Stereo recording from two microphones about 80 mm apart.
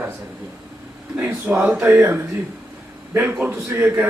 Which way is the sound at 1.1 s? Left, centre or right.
Right.